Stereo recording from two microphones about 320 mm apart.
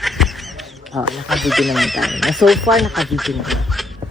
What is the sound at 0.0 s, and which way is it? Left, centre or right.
Speech, centre.